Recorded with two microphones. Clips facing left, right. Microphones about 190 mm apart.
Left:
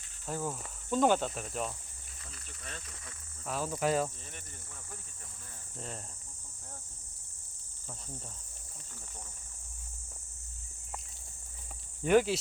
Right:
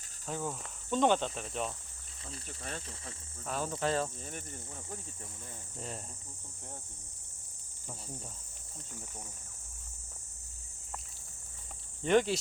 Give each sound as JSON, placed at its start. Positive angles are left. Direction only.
{"t": 0.3, "sound": "cricket", "side_deg": 5}
{"t": 2.3, "sound": "speech", "side_deg": -30}
{"t": 3.4, "sound": "cricket", "side_deg": 0}
{"t": 12.0, "sound": "cricket", "side_deg": 5}